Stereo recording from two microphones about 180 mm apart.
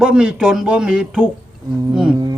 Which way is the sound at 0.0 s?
5° right (ahead or behind).